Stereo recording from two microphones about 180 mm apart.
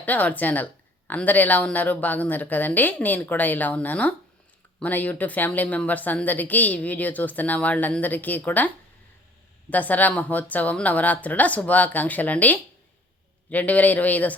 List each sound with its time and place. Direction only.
0.0 s speech: 10° left (ahead or behind)